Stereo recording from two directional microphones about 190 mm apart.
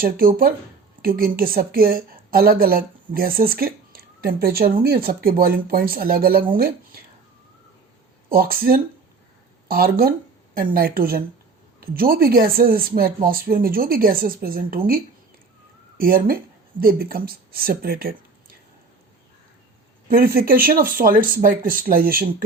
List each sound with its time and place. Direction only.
0.0 s a woman's voice: 50° right (ahead or behind)
8.3 s a woman's voice: 50° right (ahead or behind)
20.1 s a woman's voice: 50° right (ahead or behind)